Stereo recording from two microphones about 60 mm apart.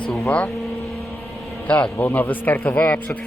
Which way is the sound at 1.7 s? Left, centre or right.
Left.